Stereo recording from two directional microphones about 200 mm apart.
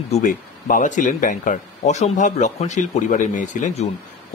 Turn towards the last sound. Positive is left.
turn(degrees=35)  # may be behind; listen again after turning